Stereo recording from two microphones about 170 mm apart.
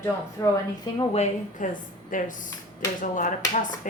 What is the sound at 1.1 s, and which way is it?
A woman's voice, 40° left (ahead or behind).